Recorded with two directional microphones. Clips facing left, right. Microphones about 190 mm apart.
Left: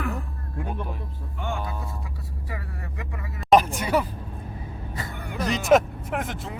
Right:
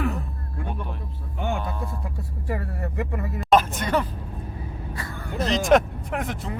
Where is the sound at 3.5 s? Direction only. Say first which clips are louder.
Left 1 dB; 10° left (ahead or behind).